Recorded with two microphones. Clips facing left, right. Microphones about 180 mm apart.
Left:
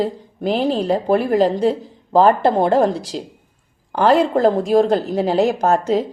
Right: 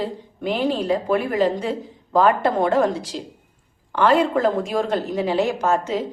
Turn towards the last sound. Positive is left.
turn(degrees=40)  # may be behind; listen again after turning